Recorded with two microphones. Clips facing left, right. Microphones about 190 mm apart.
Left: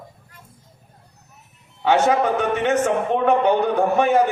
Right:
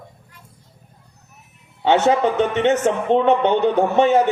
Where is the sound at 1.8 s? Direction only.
25° right (ahead or behind).